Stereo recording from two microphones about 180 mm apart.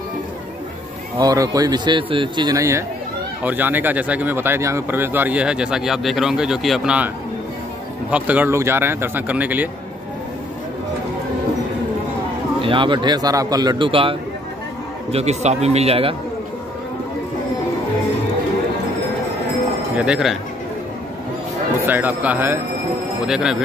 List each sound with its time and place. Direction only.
1.1 s a man's voice: 20° right (ahead or behind); by 7.1 s 5° right (ahead or behind)
8.1 s speech: 10° right (ahead or behind)
12.6 s a man's voice: 25° right (ahead or behind)
20.0 s speech: 5° right (ahead or behind)
21.8 s speech: 10° right (ahead or behind)